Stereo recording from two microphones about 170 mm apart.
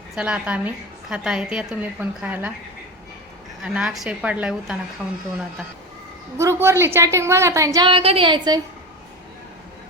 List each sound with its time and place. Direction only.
0.2 s a woman's voice: 5° right (ahead or behind)
3.6 s a woman's voice: 5° right (ahead or behind)
6.3 s a woman's voice: 15° right (ahead or behind)